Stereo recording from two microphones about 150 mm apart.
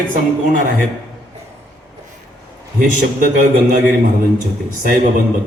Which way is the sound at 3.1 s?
65° right (ahead or behind).